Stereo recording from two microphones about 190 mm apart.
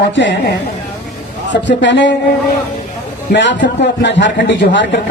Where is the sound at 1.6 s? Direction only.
70° left (ahead or behind).